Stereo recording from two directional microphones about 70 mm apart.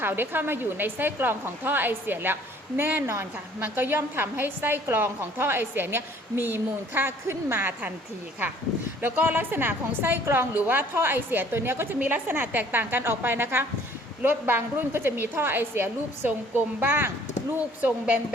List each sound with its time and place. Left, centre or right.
0.0 s a woman's voice: right
9.0 s a woman's voice: right